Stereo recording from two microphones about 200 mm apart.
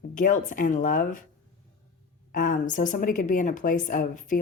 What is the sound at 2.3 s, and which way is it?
A woman's voice, 40° left (ahead or behind).